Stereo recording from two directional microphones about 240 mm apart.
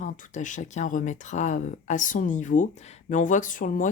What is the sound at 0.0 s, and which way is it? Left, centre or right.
Speech, left.